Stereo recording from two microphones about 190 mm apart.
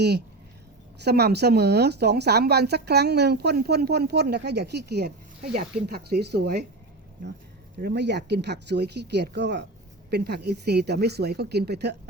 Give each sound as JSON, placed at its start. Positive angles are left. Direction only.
{"t": 1.0, "sound": "speech", "side_deg": -60}
{"t": 7.8, "sound": "speech", "side_deg": -60}